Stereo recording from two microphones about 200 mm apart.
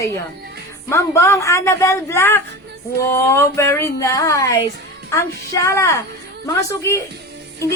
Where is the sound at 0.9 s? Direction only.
15° left (ahead or behind).